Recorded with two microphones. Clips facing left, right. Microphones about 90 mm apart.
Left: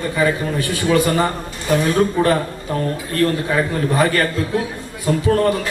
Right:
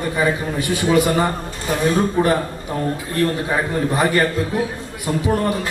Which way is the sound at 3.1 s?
15° right (ahead or behind).